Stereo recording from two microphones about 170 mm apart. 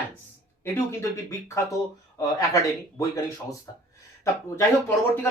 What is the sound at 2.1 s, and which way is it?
Speech, 20° left (ahead or behind).